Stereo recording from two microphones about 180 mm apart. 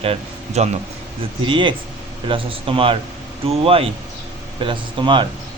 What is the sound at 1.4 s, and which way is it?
Speech, 25° right (ahead or behind).